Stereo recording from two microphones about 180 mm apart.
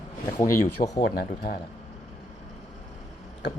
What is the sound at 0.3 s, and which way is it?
Speech, 15° left (ahead or behind).